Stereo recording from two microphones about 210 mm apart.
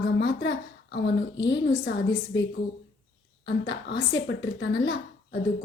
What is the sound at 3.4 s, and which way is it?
Speech, 55° left (ahead or behind).